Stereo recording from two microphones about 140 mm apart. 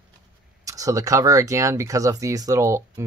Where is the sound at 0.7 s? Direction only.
25° right (ahead or behind).